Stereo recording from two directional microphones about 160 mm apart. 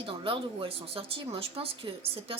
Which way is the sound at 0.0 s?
35° right (ahead or behind).